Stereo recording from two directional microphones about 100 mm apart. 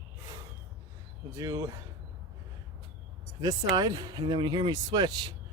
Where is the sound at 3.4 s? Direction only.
40° right (ahead or behind).